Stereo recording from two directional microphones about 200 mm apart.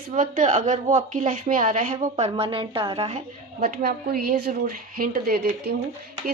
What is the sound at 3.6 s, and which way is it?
A woman's voice, 45° right (ahead or behind).